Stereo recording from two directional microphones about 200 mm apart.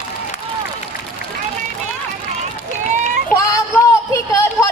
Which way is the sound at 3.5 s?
15° left (ahead or behind).